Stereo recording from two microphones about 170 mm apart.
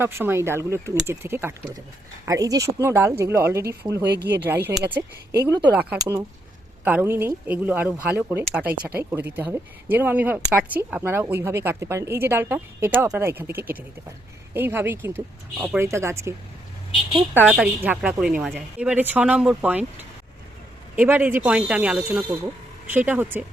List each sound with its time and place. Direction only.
0.0 s speech: 15° right (ahead or behind)
4.0 s speech: 80° right
4.4 s speech: 10° right (ahead or behind)
6.0 s speech: 15° right (ahead or behind)
8.8 s speech: 65° right (ahead or behind)
9.3 s speech: 10° right (ahead or behind)
17.3 s speech: 10° right (ahead or behind)
20.9 s speech: 10° right (ahead or behind)